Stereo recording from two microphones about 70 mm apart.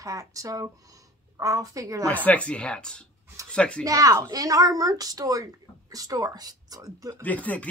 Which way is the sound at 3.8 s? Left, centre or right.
Right.